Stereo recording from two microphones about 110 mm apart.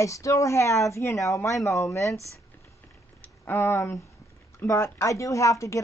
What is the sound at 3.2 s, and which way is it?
Speech, 20° left (ahead or behind).